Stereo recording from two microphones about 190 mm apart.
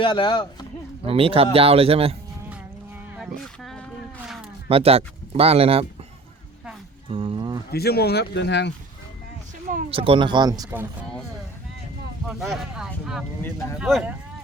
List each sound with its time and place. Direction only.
0.0 s speech: 25° left (ahead or behind)
1.0 s speech: 30° right (ahead or behind)
3.2 s a sound: centre (ahead or behind)
4.7 s speech: 30° right (ahead or behind)
7.1 s speech: 30° right (ahead or behind)
7.7 s speech: 55° left (ahead or behind)
9.9 s speech: 30° right (ahead or behind)
12.3 s speech: centre (ahead or behind)
13.4 s speech: 15° left (ahead or behind)
13.7 s speech: 5° right (ahead or behind)